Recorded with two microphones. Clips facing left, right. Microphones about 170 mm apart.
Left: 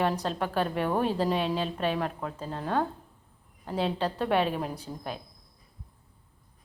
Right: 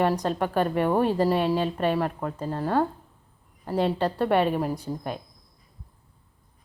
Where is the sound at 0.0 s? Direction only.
10° right (ahead or behind).